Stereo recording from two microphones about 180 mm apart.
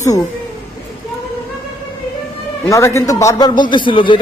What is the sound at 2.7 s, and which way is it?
Speech, 15° left (ahead or behind).